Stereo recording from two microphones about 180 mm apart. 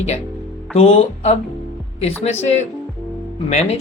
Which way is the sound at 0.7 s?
35° left (ahead or behind).